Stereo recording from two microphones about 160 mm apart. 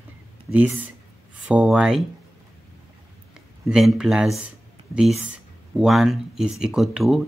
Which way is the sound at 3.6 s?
5° right (ahead or behind).